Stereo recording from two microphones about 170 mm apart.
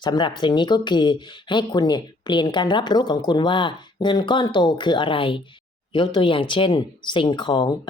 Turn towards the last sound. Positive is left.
turn(degrees=25)  # may be behind; listen again after turning